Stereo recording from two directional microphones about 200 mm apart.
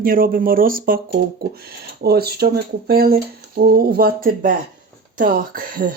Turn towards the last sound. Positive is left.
turn(degrees=-45)  # may be behind; listen again after turning